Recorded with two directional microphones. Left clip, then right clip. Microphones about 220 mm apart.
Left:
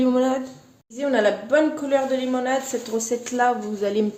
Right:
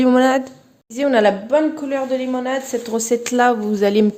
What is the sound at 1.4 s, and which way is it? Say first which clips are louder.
Speech: right 2 dB; 25° right (ahead or behind).